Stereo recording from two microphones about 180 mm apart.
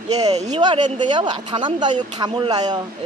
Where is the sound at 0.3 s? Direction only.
40° right (ahead or behind).